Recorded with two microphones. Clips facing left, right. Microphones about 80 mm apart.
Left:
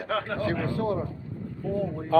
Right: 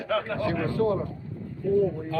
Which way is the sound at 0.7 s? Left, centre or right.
Centre.